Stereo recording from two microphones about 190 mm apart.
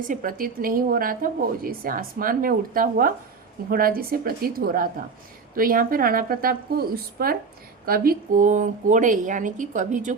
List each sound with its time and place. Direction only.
0.1 s speech: 45° right (ahead or behind)